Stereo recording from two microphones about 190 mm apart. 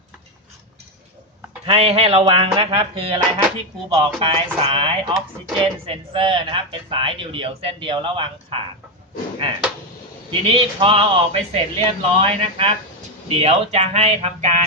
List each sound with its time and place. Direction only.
1.6 s a man's voice: 30° right (ahead or behind)
10.4 s a man's voice: 30° right (ahead or behind)